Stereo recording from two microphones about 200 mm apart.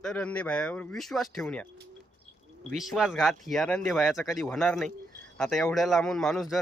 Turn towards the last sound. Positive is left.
turn(degrees=0)  # may be behind; listen again after turning